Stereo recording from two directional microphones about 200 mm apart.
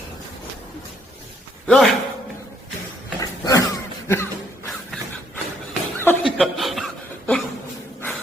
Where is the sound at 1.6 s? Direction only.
5° left (ahead or behind).